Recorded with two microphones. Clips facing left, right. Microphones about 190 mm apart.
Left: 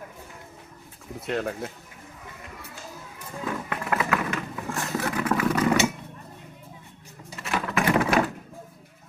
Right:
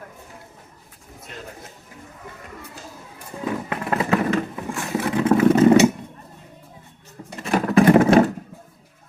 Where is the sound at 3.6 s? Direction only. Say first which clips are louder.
Right 3 dB; 30° right (ahead or behind).